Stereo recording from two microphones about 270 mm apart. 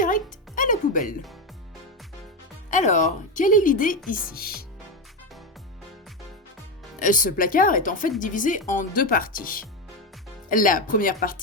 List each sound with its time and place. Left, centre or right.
0.0 s music: left
2.6 s speech: left
7.0 s speech: left